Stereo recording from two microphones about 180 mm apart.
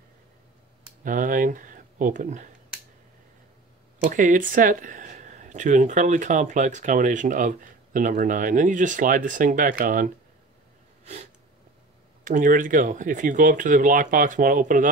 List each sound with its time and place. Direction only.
1.0 s speech: 50° right (ahead or behind)
4.1 s speech: 45° right (ahead or behind)
12.3 s speech: 45° right (ahead or behind)